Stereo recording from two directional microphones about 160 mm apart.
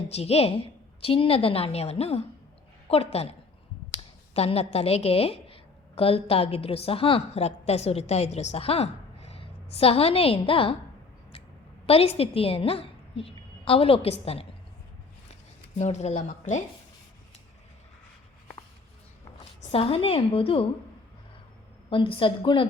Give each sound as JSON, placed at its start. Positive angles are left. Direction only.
{"t": 0.1, "sound": "a woman's voice", "side_deg": 40}
{"t": 4.4, "sound": "a woman's voice", "side_deg": 40}
{"t": 11.9, "sound": "a woman's voice", "side_deg": 40}
{"t": 15.8, "sound": "a woman's voice", "side_deg": 45}
{"t": 19.7, "sound": "a woman's voice", "side_deg": 35}
{"t": 21.8, "sound": "a woman's voice", "side_deg": 35}